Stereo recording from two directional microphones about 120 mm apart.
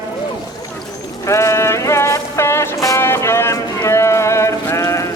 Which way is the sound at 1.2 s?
25° left (ahead or behind).